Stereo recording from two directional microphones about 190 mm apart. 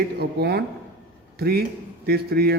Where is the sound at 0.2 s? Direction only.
55° right (ahead or behind).